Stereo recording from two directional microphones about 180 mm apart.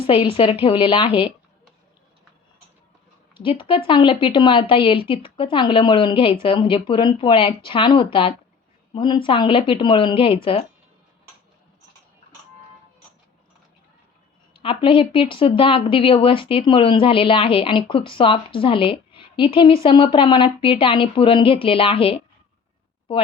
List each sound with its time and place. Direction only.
0.1 s a woman's voice: 30° left (ahead or behind)
3.3 s a woman's voice: 30° left (ahead or behind)
14.6 s a woman's voice: 30° left (ahead or behind)